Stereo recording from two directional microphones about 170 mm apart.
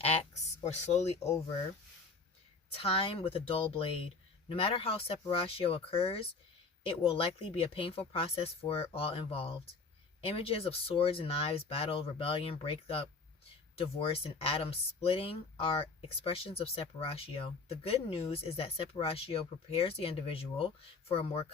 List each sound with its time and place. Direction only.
0.6 s speech: 40° left (ahead or behind)
2.7 s speech: 35° left (ahead or behind)